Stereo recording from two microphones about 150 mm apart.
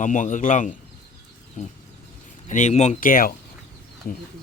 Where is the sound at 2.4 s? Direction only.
55° left (ahead or behind).